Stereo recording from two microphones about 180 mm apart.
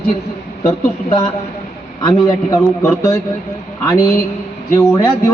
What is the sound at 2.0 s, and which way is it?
A man's voice, 25° left (ahead or behind).